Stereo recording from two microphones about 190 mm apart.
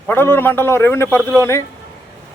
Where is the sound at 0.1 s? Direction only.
10° left (ahead or behind).